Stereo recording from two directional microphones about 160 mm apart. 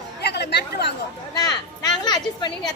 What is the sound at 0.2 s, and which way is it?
Chatter, 90° left.